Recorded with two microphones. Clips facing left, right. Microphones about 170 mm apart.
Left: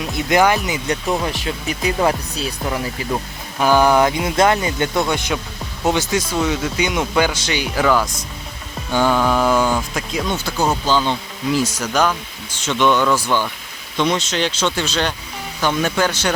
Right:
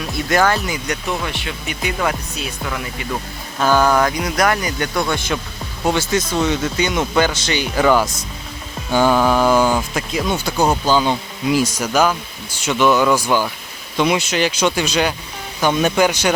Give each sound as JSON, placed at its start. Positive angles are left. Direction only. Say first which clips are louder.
{"t": 0.0, "sound": "speech", "louder": "left 1 dB", "side_deg": 20}
{"t": 1.2, "sound": "speech", "louder": "left 3 dB", "side_deg": 35}
{"t": 3.6, "sound": "speech", "louder": "left 1 dB", "side_deg": 15}
{"t": 8.9, "sound": "speech", "louder": "right 2 dB", "side_deg": -5}
{"t": 10.3, "sound": "speech", "louder": "right 3 dB", "side_deg": -15}